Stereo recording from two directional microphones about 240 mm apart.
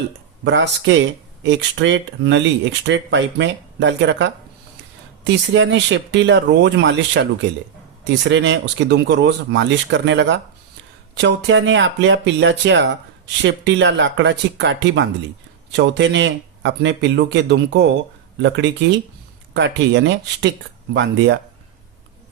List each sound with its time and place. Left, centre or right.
0.4 s speech: right